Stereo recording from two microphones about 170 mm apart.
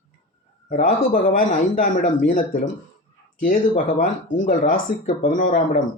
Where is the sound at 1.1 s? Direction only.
55° left (ahead or behind).